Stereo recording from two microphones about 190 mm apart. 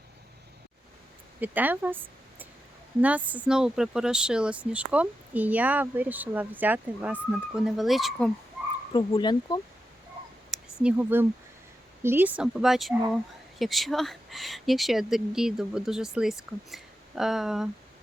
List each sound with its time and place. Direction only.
1.4 s speech: 10° right (ahead or behind)
8.9 s speech: 25° left (ahead or behind)
10.5 s speech: 5° right (ahead or behind)